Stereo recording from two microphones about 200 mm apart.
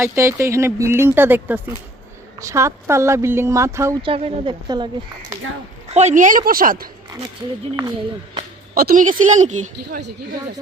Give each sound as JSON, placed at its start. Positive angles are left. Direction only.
{"t": 0.0, "sound": "speech", "side_deg": -15}
{"t": 4.0, "sound": "speech", "side_deg": -30}
{"t": 5.9, "sound": "a woman's voice", "side_deg": -35}
{"t": 8.7, "sound": "a woman's voice", "side_deg": -45}